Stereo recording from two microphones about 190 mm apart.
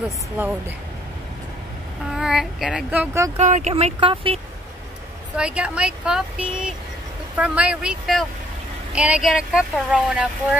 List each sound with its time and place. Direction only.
2.0 s a child's voice: centre (ahead or behind)
3.3 s speech: 40° right (ahead or behind)
5.4 s speech: 5° right (ahead or behind)